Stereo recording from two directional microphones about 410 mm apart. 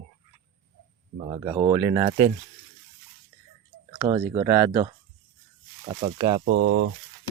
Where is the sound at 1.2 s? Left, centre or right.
Centre.